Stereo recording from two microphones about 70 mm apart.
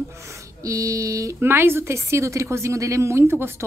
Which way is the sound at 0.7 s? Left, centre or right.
Right.